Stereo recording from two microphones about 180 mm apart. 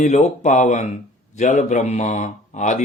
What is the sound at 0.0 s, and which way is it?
Speech, 40° left (ahead or behind).